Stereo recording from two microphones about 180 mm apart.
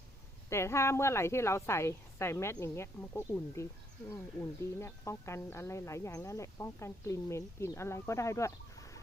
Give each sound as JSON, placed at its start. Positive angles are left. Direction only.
{"t": 0.5, "sound": "speech", "side_deg": 15}
{"t": 4.8, "sound": "speech", "side_deg": 15}